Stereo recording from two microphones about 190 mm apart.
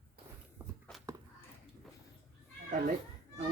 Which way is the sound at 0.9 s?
5° left (ahead or behind).